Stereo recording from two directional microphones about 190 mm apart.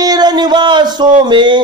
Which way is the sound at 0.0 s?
20° right (ahead or behind).